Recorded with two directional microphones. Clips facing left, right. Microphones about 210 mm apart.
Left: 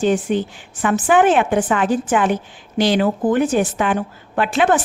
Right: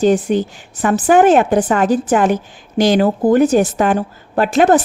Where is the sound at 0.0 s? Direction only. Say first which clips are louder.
Right 4 dB; 40° right (ahead or behind).